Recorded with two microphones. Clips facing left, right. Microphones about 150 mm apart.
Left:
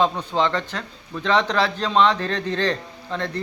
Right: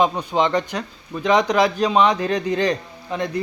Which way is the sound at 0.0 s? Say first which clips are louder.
Right 2 dB; 15° right (ahead or behind).